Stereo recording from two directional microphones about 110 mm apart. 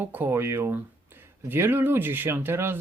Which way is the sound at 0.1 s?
20° right (ahead or behind).